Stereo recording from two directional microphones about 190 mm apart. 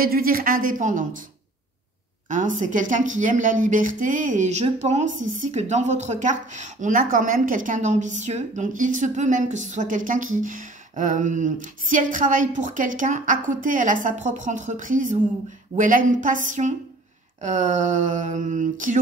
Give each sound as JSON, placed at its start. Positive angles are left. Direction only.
{"t": 0.0, "sound": "a woman's voice", "side_deg": -50}
{"t": 2.2, "sound": "a woman's voice", "side_deg": -40}